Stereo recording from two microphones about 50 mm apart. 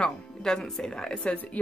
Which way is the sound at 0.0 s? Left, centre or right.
Centre.